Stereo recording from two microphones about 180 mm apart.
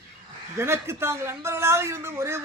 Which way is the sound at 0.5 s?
15° right (ahead or behind).